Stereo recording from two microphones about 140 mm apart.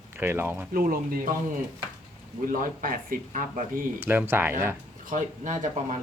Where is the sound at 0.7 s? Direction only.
90° right.